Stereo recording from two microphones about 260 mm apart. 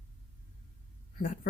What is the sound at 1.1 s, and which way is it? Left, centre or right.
Speech, left.